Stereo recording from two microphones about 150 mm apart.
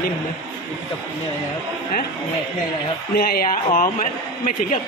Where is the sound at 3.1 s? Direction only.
90° left.